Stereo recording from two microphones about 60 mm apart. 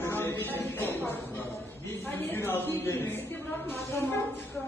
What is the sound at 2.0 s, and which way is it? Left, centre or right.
A woman's voice, left.